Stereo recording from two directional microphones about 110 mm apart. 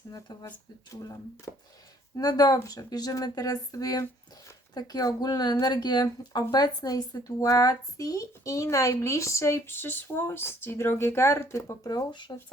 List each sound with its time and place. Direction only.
0.9 s speech: 30° left (ahead or behind)